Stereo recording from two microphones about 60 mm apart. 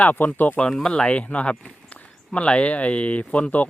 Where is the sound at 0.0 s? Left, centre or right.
Left.